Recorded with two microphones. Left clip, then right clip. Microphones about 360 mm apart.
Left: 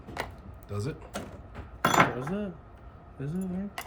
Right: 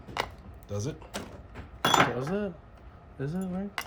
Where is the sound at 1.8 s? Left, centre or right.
Centre.